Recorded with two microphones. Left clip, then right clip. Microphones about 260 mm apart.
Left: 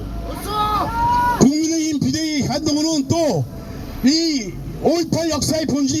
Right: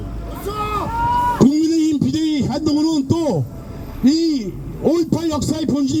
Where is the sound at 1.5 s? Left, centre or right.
Right.